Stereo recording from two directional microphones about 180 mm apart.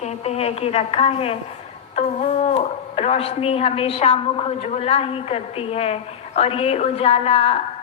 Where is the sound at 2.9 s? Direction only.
35° left (ahead or behind).